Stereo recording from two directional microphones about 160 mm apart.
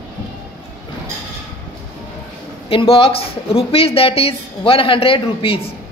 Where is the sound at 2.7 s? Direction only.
35° left (ahead or behind).